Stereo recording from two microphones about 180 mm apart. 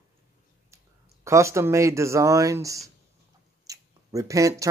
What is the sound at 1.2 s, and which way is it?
A man's voice, 15° right (ahead or behind).